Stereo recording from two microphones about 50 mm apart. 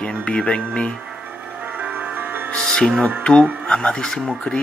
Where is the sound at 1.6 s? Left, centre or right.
Right.